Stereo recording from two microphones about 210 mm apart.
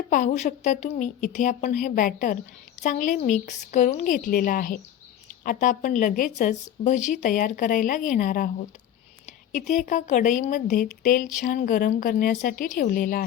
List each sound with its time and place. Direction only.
0.1 s a woman's voice: 35° left (ahead or behind)
9.5 s a woman's voice: 35° left (ahead or behind)